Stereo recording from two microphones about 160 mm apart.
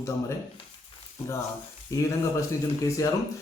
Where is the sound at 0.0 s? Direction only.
20° left (ahead or behind).